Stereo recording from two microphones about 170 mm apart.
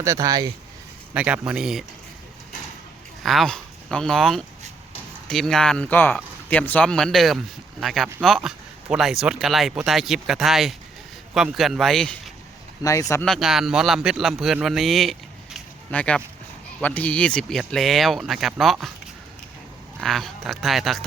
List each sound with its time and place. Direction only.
0.0 s speech: 20° right (ahead or behind)
1.1 s speech: 10° right (ahead or behind)
3.2 s speech: centre (ahead or behind)
12.8 s speech: 20° left (ahead or behind)
13.2 s speech: centre (ahead or behind)
20.0 s speech: centre (ahead or behind)